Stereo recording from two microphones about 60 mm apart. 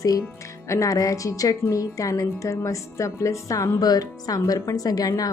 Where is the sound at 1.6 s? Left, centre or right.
Left.